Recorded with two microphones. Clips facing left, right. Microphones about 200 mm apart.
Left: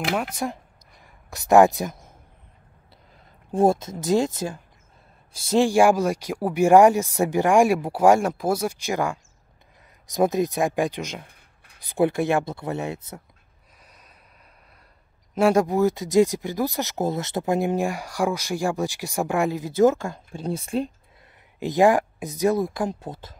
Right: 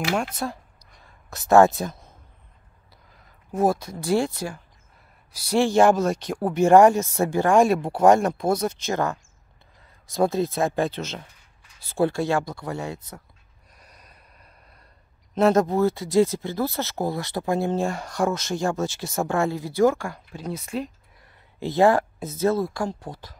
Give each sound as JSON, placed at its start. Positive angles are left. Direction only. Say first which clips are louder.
{"t": 0.4, "sound": "speech", "louder": "left 1 dB", "side_deg": 15}
{"t": 3.5, "sound": "speech", "louder": "left 3 dB", "side_deg": 25}
{"t": 11.2, "sound": "writing", "louder": "left 1 dB", "side_deg": 60}
{"t": 11.8, "sound": "speech", "louder": "left 1 dB", "side_deg": 20}
{"t": 13.7, "sound": "snort", "louder": "right 1 dB", "side_deg": 5}
{"t": 15.3, "sound": "speech", "louder": "even", "side_deg": 10}
{"t": 21.5, "sound": "speech", "louder": "left 1 dB", "side_deg": 15}